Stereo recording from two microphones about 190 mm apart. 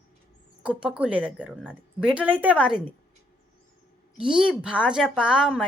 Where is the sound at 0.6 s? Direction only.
5° right (ahead or behind).